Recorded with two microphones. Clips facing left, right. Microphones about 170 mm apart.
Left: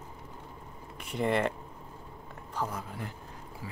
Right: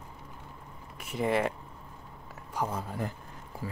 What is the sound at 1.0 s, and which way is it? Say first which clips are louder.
Speech: even; 5° right (ahead or behind).